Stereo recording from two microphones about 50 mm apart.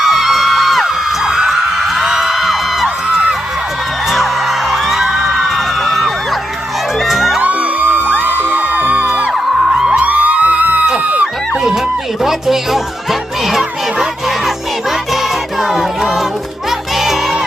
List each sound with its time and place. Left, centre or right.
0.0 s a sound: centre
1.3 s music: centre
4.1 s music: centre
7.4 s music: right
9.6 s music: centre
10.0 s music: right
10.8 s a sound: right
12.2 s music: centre